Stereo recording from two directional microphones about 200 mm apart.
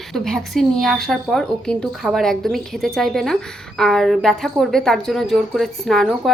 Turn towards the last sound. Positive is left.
turn(degrees=0)  # may be behind; listen again after turning